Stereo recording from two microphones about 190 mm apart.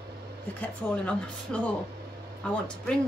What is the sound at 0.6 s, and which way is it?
A woman's voice, 5° left (ahead or behind).